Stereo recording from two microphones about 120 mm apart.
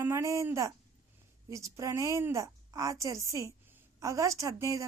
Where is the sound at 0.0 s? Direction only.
25° right (ahead or behind).